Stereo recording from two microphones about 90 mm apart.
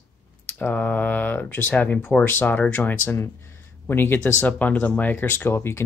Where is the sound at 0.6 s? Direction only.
15° left (ahead or behind).